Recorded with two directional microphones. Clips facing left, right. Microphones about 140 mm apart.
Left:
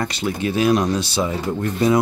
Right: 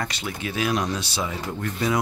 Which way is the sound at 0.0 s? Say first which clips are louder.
Left 8 dB; 35° left (ahead or behind).